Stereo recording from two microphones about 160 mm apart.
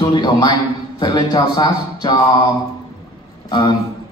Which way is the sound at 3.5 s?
30° left (ahead or behind).